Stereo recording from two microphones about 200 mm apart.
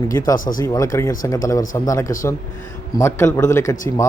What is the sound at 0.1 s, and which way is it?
A man's voice, 15° left (ahead or behind).